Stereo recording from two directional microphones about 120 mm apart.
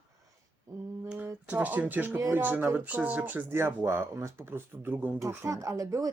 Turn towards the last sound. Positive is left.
turn(degrees=-30)  # may be behind; listen again after turning